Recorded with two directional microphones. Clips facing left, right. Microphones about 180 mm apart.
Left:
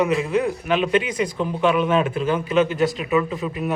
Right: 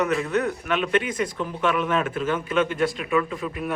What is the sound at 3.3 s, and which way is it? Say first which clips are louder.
Speech: left 3 dB; 5° left (ahead or behind).